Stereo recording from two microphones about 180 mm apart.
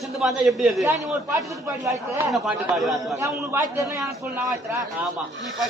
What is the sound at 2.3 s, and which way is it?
Speech, centre (ahead or behind).